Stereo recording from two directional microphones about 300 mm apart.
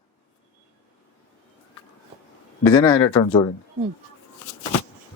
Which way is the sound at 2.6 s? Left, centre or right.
Centre.